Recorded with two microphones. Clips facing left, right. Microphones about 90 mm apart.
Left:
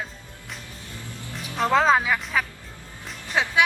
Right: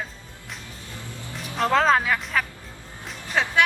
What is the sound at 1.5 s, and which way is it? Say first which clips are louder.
Speech: even; centre (ahead or behind).